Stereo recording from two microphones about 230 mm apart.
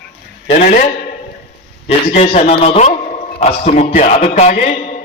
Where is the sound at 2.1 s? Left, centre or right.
Left.